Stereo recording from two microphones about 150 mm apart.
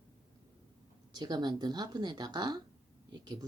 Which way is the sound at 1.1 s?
30° right (ahead or behind).